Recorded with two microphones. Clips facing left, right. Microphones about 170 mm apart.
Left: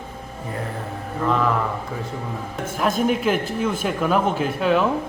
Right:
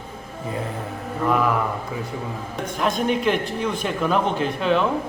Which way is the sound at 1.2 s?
10° right (ahead or behind).